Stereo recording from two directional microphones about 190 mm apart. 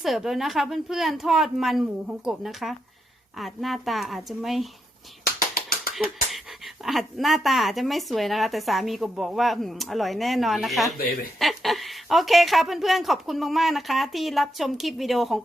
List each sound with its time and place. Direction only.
0.0 s speech: centre (ahead or behind)
5.2 s finger snapping: 50° left (ahead or behind)
6.8 s speech: centre (ahead or behind)